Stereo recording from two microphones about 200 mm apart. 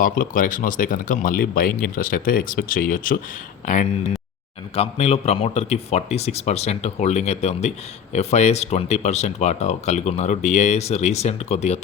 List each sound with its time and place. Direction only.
0.0 s speech: 40° left (ahead or behind)